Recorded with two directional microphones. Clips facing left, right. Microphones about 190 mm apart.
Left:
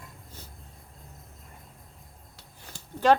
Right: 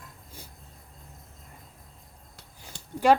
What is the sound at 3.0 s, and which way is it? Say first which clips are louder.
Speech: right 1 dB; 10° right (ahead or behind).